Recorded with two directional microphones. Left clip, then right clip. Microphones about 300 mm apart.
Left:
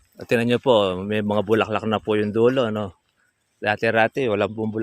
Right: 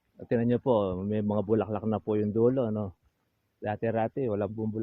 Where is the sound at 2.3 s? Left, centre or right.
Left.